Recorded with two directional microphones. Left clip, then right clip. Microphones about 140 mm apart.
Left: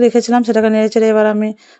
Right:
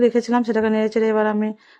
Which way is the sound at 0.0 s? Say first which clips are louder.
Left 6 dB; 25° left (ahead or behind).